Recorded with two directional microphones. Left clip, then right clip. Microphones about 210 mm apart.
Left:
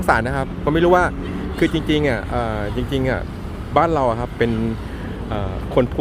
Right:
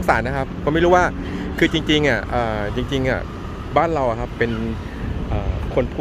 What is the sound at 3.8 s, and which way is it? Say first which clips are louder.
Speech: left 2 dB; 10° left (ahead or behind).